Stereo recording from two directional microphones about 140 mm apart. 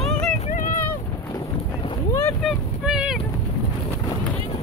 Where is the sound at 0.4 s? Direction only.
65° left (ahead or behind).